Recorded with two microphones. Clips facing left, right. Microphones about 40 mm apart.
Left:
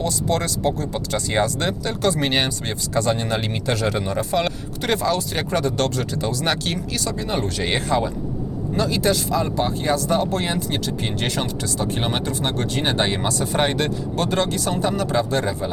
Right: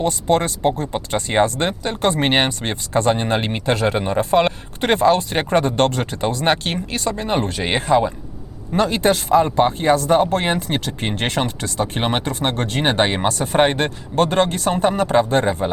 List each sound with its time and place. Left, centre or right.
0.0 s speech: right
8.7 s speech: right